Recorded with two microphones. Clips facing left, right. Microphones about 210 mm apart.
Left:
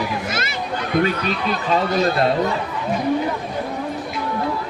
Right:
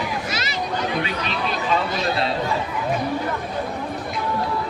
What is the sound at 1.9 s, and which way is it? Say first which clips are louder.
Speech: left 5 dB; 50° left (ahead or behind).